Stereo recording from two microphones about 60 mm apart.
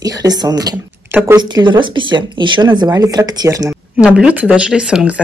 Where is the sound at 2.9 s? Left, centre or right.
Right.